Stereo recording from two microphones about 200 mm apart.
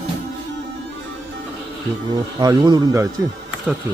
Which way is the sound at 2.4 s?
20° right (ahead or behind).